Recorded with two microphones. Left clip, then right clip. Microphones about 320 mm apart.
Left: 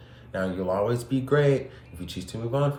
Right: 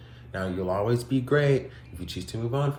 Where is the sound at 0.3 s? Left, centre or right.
Centre.